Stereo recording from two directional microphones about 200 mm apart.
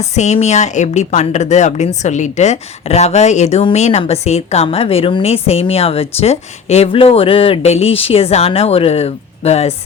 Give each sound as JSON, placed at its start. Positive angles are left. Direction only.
{"t": 0.1, "sound": "a woman's voice", "side_deg": 35}